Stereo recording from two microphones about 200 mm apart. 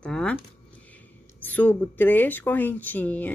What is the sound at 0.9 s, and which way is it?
Speech, 10° left (ahead or behind).